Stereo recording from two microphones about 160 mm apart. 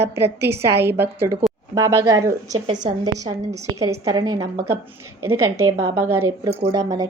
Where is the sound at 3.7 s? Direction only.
20° right (ahead or behind).